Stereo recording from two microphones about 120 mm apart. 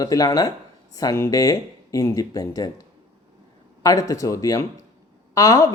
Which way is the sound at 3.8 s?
30° left (ahead or behind).